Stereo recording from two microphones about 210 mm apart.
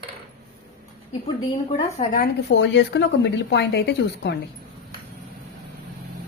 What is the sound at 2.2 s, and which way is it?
A woman's voice, 55° left (ahead or behind).